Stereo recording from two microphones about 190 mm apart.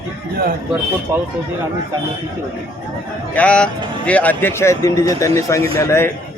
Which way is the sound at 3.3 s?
5° left (ahead or behind).